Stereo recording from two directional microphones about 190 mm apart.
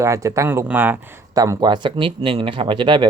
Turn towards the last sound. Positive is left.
turn(degrees=-25)  # may be behind; listen again after turning